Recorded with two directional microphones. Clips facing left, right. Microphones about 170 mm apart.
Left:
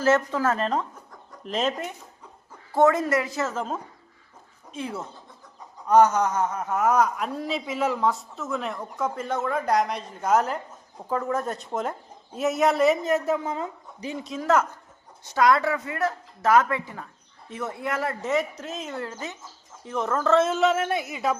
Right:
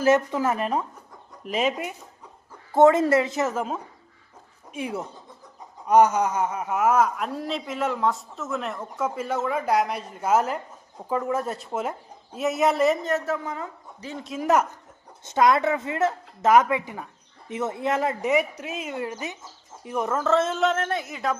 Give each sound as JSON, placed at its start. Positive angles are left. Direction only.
{"t": 0.0, "sound": "a woman's voice", "side_deg": -15}
{"t": 2.7, "sound": "a woman's voice", "side_deg": -25}
{"t": 3.5, "sound": "a woman's voice", "side_deg": -5}
{"t": 14.4, "sound": "a woman's voice", "side_deg": -15}